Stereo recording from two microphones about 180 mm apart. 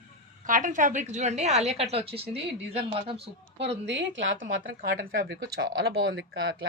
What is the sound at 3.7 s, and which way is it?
Speech, 80° right.